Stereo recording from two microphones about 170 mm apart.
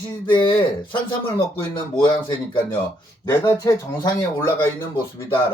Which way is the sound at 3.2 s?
15° left (ahead or behind).